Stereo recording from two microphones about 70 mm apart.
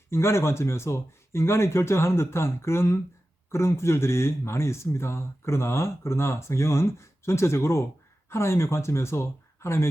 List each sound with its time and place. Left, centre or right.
0.1 s speech: left